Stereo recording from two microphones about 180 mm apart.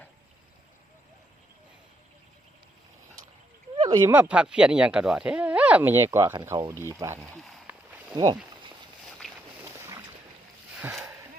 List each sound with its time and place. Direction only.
3.8 s speech: 20° right (ahead or behind)
9.2 s boat: centre (ahead or behind)
10.8 s speech: 10° right (ahead or behind)